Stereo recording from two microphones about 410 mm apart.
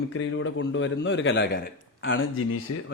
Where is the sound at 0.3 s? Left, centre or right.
Left.